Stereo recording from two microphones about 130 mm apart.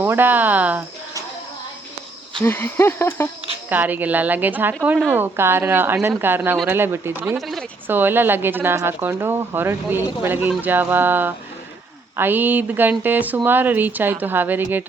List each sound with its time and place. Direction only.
0.0 s speech: 15° right (ahead or behind)
2.4 s speech: 20° left (ahead or behind)
3.7 s speech: 15° right (ahead or behind)
7.3 s speech: centre (ahead or behind)
7.9 s speech: 15° right (ahead or behind)